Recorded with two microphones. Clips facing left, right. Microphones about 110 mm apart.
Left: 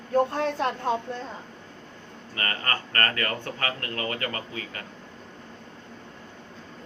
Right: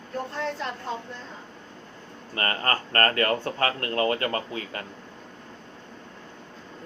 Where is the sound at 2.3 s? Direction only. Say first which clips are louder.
Right 3 dB; 35° right (ahead or behind).